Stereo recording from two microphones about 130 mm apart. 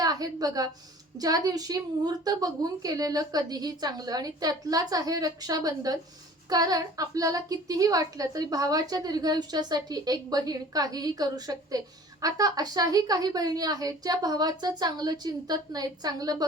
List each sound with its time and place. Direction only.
0.0 s a woman's voice: 30° right (ahead or behind)